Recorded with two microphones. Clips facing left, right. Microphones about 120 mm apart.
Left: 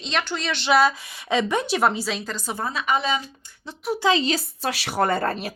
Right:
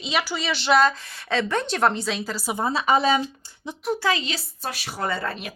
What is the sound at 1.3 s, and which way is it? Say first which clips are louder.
Speech: left 2 dB; 15° left (ahead or behind).